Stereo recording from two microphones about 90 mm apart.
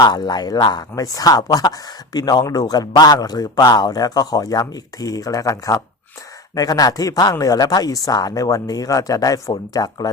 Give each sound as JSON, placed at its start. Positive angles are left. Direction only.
{"t": 0.0, "sound": "a man's voice", "side_deg": 50}